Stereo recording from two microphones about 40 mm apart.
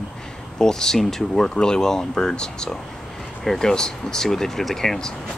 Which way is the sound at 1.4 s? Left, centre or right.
Left.